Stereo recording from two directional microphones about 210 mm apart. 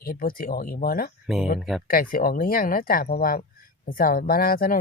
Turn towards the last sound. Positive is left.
turn(degrees=45)  # may be behind; listen again after turning